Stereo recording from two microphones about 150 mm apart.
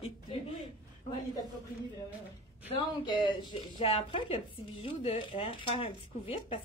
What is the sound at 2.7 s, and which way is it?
Speech, 30° left (ahead or behind).